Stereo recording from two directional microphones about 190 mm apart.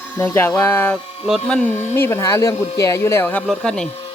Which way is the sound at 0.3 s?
10° left (ahead or behind).